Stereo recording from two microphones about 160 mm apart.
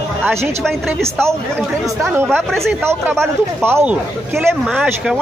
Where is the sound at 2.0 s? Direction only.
15° right (ahead or behind).